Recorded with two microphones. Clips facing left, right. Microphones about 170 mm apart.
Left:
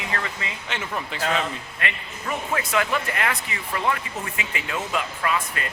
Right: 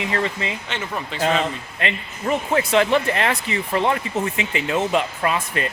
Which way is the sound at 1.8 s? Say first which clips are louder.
Right 7 dB; 30° right (ahead or behind).